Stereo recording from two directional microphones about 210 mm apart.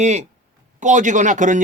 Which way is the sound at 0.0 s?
35° right (ahead or behind).